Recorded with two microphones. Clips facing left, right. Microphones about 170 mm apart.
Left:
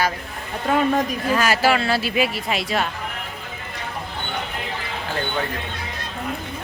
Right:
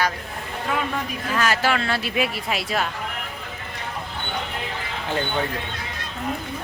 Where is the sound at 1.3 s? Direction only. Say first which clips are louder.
Left 3 dB; 10° left (ahead or behind).